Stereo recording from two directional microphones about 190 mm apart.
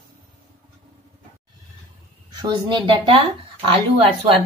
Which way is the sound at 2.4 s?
25° right (ahead or behind).